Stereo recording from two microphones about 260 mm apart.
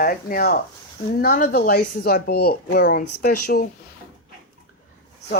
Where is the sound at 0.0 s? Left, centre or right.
Left.